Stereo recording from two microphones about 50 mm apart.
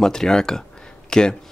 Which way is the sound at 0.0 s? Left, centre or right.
Centre.